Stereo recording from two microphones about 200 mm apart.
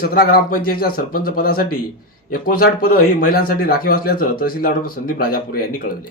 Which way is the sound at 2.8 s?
45° left (ahead or behind).